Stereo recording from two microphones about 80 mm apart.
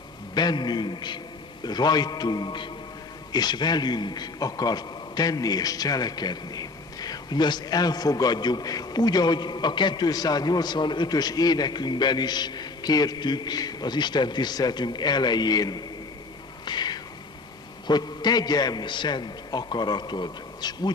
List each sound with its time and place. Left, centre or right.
0.3 s a man's voice: left
3.3 s a man's voice: left
16.6 s a sound: left
17.8 s a man's voice: left